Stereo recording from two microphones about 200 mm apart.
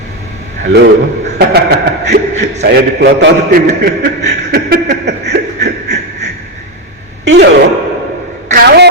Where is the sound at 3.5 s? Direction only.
55° right (ahead or behind).